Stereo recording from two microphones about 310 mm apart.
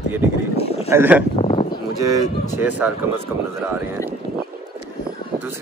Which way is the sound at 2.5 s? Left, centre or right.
Centre.